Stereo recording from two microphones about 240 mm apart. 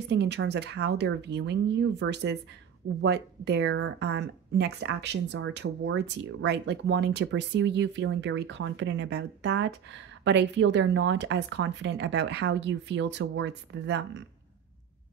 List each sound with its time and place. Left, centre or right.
0.1 s speech: right